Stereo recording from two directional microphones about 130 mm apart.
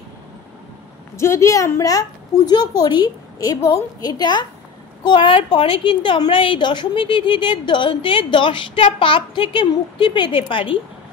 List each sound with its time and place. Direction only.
1.1 s a woman's voice: 20° left (ahead or behind); by 10.8 s 40° left (ahead or behind)